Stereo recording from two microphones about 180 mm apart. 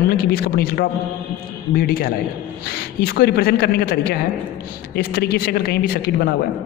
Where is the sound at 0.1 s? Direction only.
55° left (ahead or behind).